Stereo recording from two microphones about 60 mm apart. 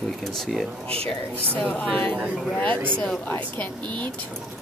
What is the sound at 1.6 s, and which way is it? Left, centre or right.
A woman's voice, left.